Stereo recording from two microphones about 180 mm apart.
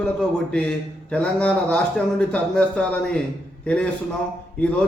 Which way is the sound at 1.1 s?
5° left (ahead or behind).